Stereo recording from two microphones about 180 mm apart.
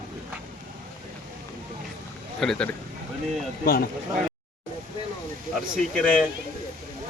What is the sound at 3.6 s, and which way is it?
Speech, 55° left (ahead or behind).